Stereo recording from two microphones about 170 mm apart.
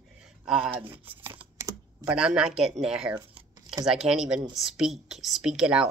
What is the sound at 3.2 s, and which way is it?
Tearing, 25° right (ahead or behind).